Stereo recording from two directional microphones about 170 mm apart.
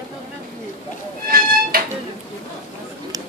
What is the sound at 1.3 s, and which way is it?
Music, 60° right (ahead or behind).